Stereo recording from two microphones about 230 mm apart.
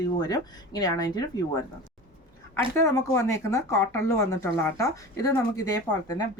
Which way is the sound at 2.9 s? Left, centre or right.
Centre.